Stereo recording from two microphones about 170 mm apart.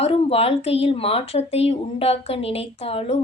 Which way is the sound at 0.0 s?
35° left (ahead or behind).